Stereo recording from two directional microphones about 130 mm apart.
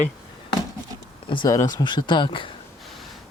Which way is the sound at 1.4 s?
30° left (ahead or behind).